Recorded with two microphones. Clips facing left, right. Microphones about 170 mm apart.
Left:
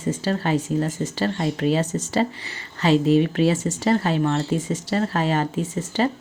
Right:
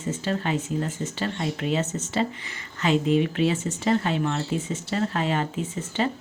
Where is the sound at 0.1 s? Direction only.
40° left (ahead or behind).